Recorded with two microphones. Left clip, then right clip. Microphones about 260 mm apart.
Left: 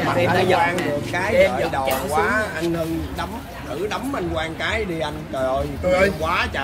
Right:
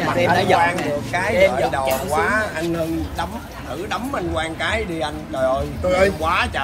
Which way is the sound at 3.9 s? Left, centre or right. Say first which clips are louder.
Right 5 dB; right.